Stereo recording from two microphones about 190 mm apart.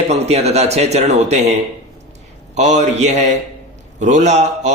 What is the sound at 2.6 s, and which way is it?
A man's voice, 35° right (ahead or behind).